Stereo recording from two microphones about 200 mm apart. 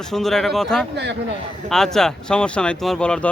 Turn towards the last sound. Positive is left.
turn(degrees=5)  # may be behind; listen again after turning